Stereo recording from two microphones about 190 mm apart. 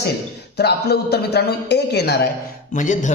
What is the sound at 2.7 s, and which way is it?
Speech, 40° left (ahead or behind).